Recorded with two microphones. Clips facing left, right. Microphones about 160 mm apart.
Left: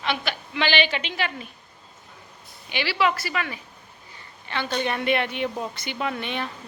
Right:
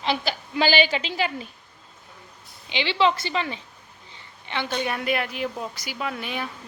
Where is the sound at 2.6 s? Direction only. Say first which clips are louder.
Right 2 dB; 20° right (ahead or behind); by 6.5 s 5° right (ahead or behind).